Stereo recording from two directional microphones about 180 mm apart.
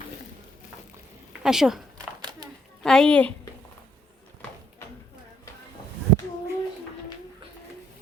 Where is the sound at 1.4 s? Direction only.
5° right (ahead or behind).